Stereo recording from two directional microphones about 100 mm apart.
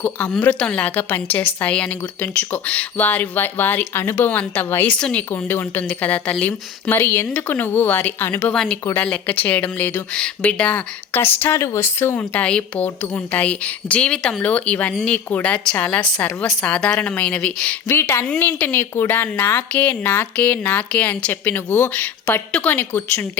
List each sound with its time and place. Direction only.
0.0 s a woman's voice: 15° left (ahead or behind)
4.9 s a woman's voice: 10° left (ahead or behind)
5.5 s a woman's voice: 20° left (ahead or behind)
8.5 s a woman's voice: 5° left (ahead or behind)
17.8 s a woman's voice: 25° left (ahead or behind)